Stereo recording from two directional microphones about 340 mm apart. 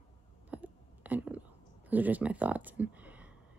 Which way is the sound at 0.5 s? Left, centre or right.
Centre.